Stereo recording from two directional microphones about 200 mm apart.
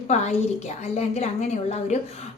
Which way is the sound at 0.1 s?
35° left (ahead or behind).